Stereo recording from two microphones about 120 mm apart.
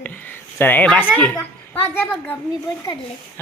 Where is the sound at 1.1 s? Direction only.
15° left (ahead or behind).